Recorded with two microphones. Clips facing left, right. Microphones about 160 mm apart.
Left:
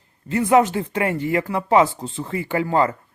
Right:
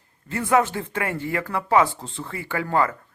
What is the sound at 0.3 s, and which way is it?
Speech, 20° left (ahead or behind).